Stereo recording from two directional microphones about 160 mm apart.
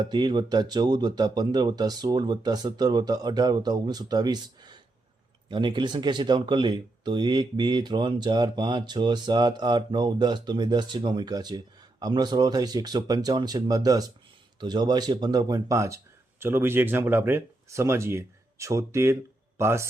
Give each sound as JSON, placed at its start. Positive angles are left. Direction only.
{"t": 0.1, "sound": "speech", "side_deg": -30}